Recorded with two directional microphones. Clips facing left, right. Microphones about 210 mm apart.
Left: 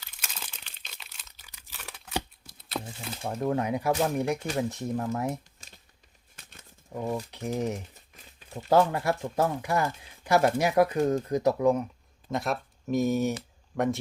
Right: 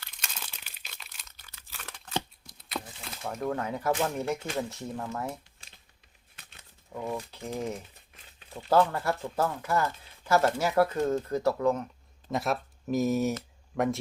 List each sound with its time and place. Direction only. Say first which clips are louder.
0.0 s crumpling: even; 10° left (ahead or behind)
0.7 s crumpling: even; 5° right (ahead or behind)
3.2 s speech: left 3 dB; 30° left (ahead or behind)
6.9 s speech: left 3 dB; 20° left (ahead or behind)
12.3 s speech: even; centre (ahead or behind)